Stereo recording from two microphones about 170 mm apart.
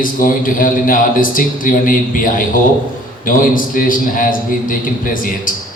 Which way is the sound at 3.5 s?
55° left (ahead or behind).